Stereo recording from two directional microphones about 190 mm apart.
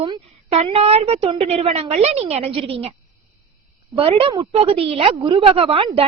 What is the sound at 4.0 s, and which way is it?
A woman's voice, 30° right (ahead or behind).